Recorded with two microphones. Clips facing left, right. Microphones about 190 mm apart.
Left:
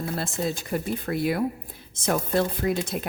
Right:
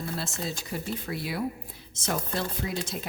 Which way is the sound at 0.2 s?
55° left (ahead or behind).